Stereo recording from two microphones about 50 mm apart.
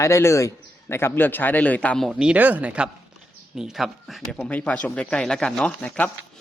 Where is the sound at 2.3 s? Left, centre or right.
Right.